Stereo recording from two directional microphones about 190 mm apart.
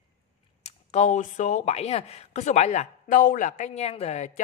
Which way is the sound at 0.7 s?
35° left (ahead or behind).